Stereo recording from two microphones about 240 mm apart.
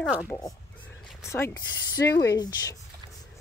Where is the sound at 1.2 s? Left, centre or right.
Centre.